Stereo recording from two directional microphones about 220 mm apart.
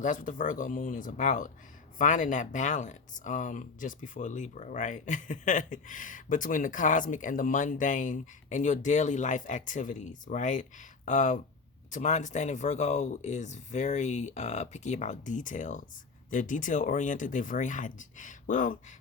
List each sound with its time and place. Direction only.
0.0 s speech: 35° left (ahead or behind)